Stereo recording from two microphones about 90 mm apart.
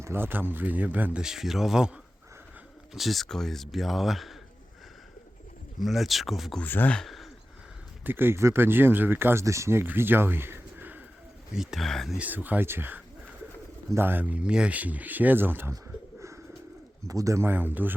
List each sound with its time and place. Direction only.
0.0 s speech: 25° right (ahead or behind)
1.2 s speech: 5° right (ahead or behind)
2.9 s speech: centre (ahead or behind)
5.8 s speech: centre (ahead or behind)
6.6 s speech: 20° left (ahead or behind)
6.9 s speech: centre (ahead or behind)
8.0 s speech: 25° right (ahead or behind)
11.5 s speech: 5° right (ahead or behind)
12.1 s speech: 20° right (ahead or behind)
17.1 s speech: 40° right (ahead or behind)
17.4 s speech: 20° right (ahead or behind)